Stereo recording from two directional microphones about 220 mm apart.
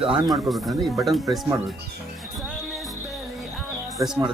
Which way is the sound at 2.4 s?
5° right (ahead or behind).